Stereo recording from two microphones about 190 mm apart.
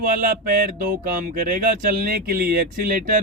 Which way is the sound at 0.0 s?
45° right (ahead or behind).